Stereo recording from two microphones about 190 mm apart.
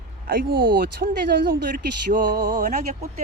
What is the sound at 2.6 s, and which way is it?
Speech, 35° right (ahead or behind).